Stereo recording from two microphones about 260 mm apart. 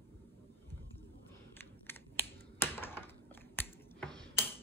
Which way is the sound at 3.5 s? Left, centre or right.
Centre.